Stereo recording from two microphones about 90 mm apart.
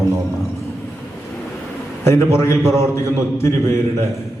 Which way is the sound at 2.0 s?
30° left (ahead or behind).